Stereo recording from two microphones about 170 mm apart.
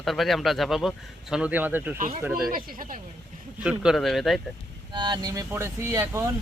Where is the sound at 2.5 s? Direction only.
55° right (ahead or behind).